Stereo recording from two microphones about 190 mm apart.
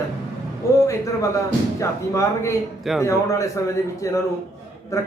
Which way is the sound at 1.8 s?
15° left (ahead or behind).